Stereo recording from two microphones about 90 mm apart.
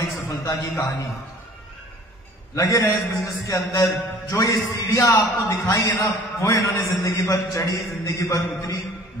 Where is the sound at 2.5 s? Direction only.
35° left (ahead or behind).